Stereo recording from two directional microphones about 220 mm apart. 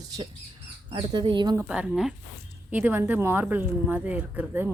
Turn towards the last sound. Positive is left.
turn(degrees=-10)  # may be behind; listen again after turning